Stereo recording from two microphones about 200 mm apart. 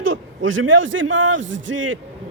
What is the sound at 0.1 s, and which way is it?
A man's voice, 75° right (ahead or behind).